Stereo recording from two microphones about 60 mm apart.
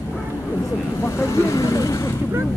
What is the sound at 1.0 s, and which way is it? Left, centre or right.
Vehicle, left.